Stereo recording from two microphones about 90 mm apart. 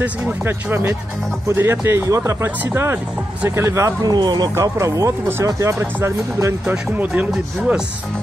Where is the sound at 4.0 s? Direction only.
50° right (ahead or behind).